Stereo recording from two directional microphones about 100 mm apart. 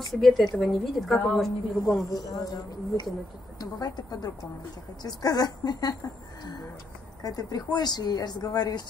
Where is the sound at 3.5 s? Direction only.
40° left (ahead or behind).